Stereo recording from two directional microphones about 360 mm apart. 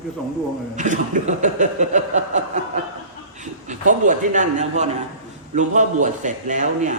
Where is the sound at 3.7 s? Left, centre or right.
Right.